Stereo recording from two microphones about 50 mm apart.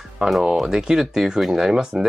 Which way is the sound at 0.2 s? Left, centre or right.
Centre.